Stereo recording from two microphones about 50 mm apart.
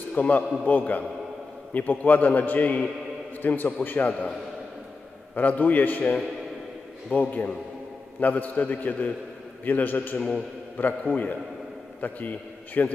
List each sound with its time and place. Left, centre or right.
0.1 s a man's voice: left
5.3 s a man's voice: left
10.1 s a man's voice: centre
10.8 s a man's voice: left